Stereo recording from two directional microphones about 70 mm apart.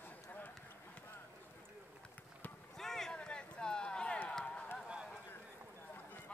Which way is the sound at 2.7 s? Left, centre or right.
Centre.